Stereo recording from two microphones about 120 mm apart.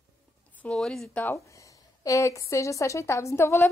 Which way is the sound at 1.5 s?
25° left (ahead or behind).